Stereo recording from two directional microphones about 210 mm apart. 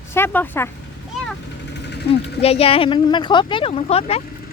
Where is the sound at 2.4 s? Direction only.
30° left (ahead or behind).